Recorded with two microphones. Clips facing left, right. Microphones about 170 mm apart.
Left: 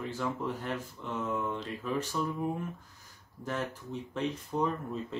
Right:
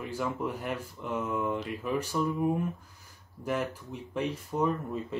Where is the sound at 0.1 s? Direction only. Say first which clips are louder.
Right 4 dB; 10° right (ahead or behind).